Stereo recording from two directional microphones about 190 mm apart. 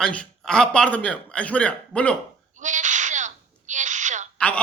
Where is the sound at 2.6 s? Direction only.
40° right (ahead or behind).